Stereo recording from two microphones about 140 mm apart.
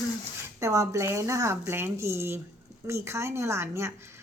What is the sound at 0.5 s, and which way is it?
A woman's voice, 20° right (ahead or behind).